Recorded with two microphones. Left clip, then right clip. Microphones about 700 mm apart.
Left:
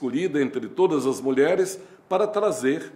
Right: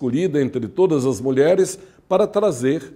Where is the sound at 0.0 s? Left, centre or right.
Right.